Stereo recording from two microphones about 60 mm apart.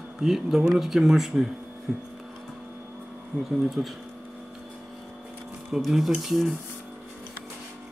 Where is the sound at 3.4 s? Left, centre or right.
Centre.